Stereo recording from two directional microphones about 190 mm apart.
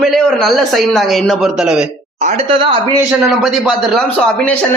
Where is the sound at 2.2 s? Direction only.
35° right (ahead or behind).